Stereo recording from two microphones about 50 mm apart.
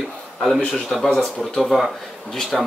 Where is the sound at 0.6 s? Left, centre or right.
Left.